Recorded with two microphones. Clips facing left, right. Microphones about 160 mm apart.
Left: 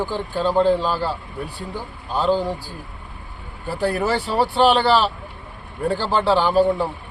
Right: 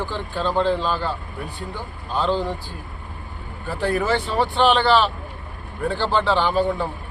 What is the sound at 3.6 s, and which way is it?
Speech, 35° left (ahead or behind).